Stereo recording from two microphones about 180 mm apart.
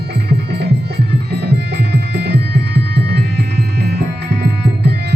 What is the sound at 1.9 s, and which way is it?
Music, 65° right (ahead or behind).